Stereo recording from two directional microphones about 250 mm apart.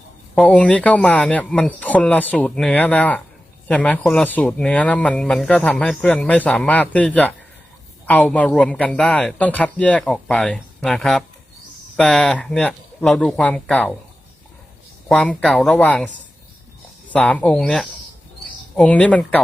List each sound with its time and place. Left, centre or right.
0.3 s speech: centre
15.1 s speech: centre